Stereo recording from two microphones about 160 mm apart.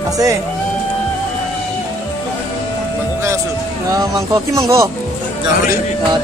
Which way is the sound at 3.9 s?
20° right (ahead or behind).